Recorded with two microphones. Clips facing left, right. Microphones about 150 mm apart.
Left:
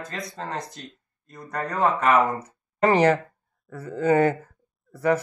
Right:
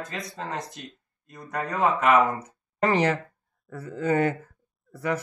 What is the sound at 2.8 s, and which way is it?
Speech, 45° left (ahead or behind).